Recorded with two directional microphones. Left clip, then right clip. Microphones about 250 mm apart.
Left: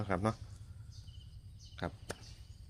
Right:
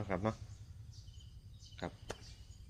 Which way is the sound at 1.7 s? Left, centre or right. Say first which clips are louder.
Left 3 dB; left.